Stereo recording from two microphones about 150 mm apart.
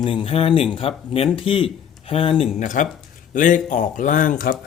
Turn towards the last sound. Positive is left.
turn(degrees=65)  # may be behind; listen again after turning